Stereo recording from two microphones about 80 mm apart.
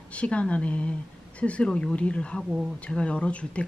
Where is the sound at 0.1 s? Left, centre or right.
Centre.